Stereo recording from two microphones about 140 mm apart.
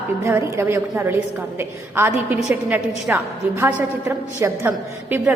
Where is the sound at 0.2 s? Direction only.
20° right (ahead or behind).